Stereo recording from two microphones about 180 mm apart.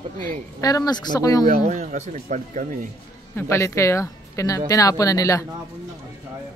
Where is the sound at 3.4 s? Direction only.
15° left (ahead or behind).